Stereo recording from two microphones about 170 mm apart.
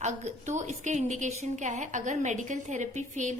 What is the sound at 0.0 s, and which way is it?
A woman's voice, 45° right (ahead or behind).